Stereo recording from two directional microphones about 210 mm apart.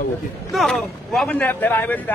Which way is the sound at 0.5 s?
Centre (ahead or behind).